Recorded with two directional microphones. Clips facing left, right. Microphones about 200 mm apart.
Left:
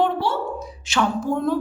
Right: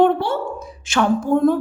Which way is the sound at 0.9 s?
50° right (ahead or behind).